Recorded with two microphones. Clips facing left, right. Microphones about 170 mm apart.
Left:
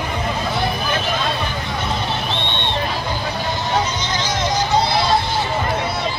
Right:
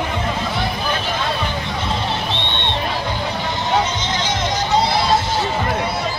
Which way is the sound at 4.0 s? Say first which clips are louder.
Right 1 dB; 20° right (ahead or behind).